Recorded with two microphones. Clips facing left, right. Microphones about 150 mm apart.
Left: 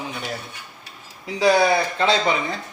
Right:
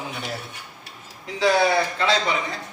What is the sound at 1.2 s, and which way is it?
Speech, 15° left (ahead or behind).